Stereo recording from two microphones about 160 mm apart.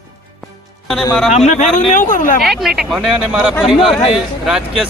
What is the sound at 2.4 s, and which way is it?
Speech, centre (ahead or behind).